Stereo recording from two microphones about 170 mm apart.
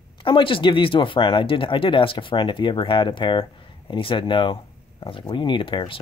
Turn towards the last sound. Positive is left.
turn(degrees=30)  # may be behind; listen again after turning